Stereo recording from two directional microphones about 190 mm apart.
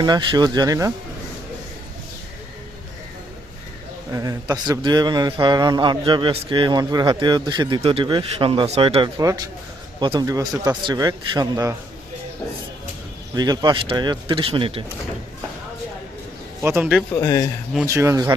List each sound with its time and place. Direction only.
0.0 s a man's voice: 25° right (ahead or behind)
4.1 s a man's voice: 20° right (ahead or behind)
13.3 s a man's voice: 20° right (ahead or behind)
16.6 s speech: 10° right (ahead or behind)
17.2 s speech: 20° left (ahead or behind)
17.8 s speech: 15° right (ahead or behind)